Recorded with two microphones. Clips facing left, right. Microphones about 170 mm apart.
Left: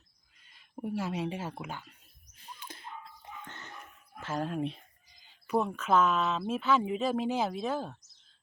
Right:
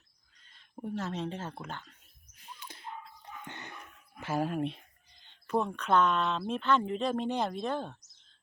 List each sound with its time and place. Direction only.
0.3 s speech: 10° left (ahead or behind)
2.5 s a sound: 50° left (ahead or behind)
3.4 s dog: 15° right (ahead or behind)
4.2 s speech: 10° right (ahead or behind)